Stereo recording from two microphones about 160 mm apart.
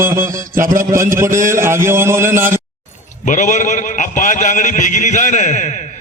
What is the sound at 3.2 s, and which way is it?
A man's voice, 50° left (ahead or behind).